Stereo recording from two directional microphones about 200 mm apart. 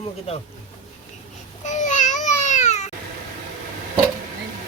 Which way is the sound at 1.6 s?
35° left (ahead or behind).